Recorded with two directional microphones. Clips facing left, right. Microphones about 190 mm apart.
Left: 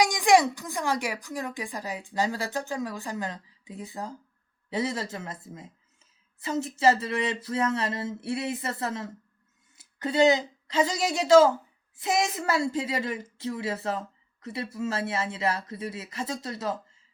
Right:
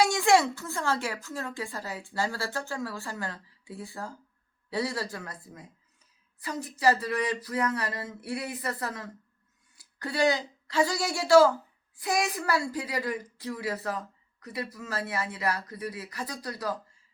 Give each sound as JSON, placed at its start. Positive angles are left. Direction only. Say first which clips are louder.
{"t": 0.0, "sound": "a woman's voice", "louder": "left 2 dB", "side_deg": 15}